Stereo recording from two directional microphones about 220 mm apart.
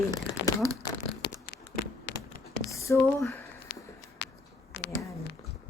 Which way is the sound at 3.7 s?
50° left (ahead or behind).